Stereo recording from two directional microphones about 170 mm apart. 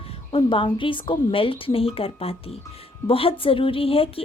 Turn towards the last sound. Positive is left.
turn(degrees=35)  # may be behind; listen again after turning